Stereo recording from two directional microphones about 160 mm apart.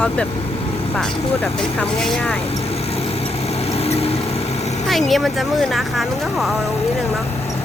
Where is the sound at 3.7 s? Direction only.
40° left (ahead or behind).